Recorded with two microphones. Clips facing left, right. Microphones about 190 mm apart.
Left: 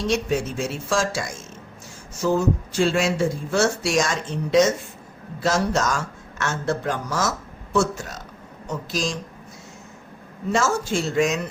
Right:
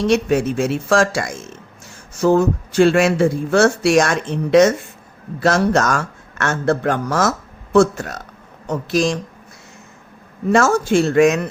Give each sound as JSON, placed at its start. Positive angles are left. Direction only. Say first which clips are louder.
{"t": 0.0, "sound": "a man's voice", "louder": "right 7 dB", "side_deg": -65}
{"t": 10.5, "sound": "speech", "louder": "right 7 dB", "side_deg": -60}